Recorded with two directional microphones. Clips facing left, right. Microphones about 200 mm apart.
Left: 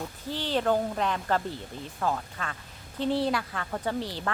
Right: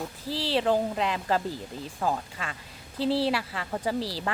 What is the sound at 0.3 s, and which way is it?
Speech, 35° right (ahead or behind).